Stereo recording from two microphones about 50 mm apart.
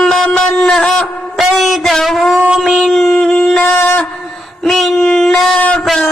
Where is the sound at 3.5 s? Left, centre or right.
Left.